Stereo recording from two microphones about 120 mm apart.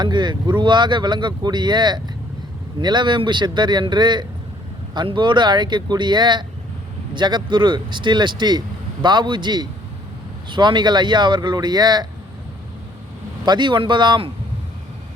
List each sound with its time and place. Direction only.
0.0 s speech: 40° right (ahead or behind)
13.4 s speech: 40° right (ahead or behind)